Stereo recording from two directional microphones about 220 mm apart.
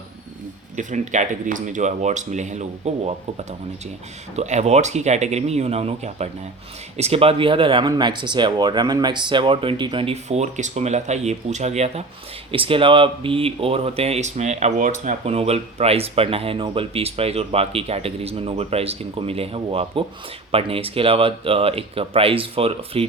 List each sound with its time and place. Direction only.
0.8 s speech: 35° right (ahead or behind)